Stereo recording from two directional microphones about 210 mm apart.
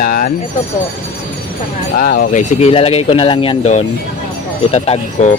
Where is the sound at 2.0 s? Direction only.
45° left (ahead or behind).